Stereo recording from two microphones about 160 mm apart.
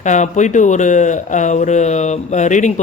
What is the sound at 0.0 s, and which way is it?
Speech, 50° left (ahead or behind).